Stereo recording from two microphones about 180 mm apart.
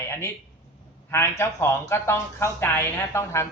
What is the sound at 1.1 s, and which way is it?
Speech, 15° left (ahead or behind).